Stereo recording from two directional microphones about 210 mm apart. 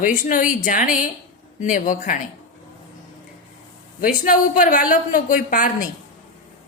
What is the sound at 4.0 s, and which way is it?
A woman's voice, 40° left (ahead or behind).